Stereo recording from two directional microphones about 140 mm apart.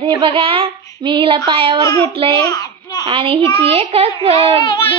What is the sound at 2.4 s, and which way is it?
Babbling, 25° left (ahead or behind).